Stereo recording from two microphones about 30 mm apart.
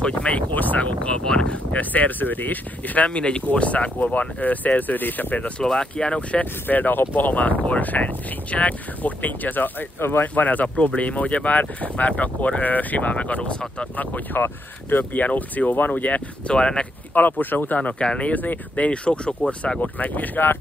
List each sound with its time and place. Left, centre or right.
0.0 s speech: left
1.8 s speech: left
3.0 s speech: left
4.0 s speech: left
5.6 s speech: left
6.7 s speech: left
13.1 s speech: left
13.9 s speech: left
16.5 s speech: left
17.1 s speech: left
17.9 s speech: left
18.3 s speech: left
18.8 s speech: left
19.8 s speech: left